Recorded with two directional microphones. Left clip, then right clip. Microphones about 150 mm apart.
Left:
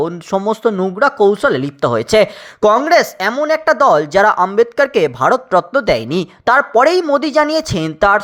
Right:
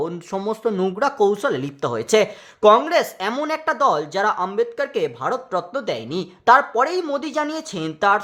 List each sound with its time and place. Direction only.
0.4 s speech: 30° left (ahead or behind)
0.9 s speech: 20° left (ahead or behind); by 6.2 s 45° left (ahead or behind)
6.4 s speech: 35° left (ahead or behind)
6.7 s speech: 45° left (ahead or behind)